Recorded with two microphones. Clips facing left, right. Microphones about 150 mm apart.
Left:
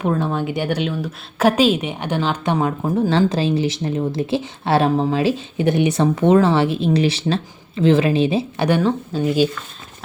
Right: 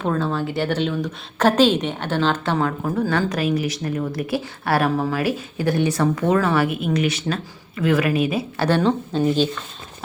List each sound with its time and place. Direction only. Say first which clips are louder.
0.0 s a woman's voice: left 2 dB; 15° left (ahead or behind)
8.6 s speech: right 1 dB; 10° left (ahead or behind)